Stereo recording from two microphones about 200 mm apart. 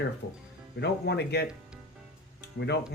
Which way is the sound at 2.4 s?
55° left (ahead or behind).